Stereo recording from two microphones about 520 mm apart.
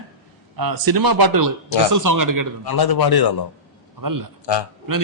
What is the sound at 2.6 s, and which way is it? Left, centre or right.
Speech, left.